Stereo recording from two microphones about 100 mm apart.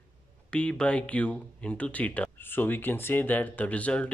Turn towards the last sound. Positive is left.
turn(degrees=15)  # may be behind; listen again after turning